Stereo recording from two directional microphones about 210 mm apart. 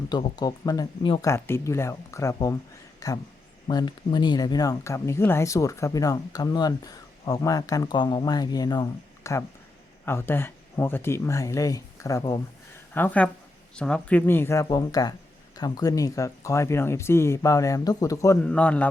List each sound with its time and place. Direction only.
0.1 s speech: 20° left (ahead or behind)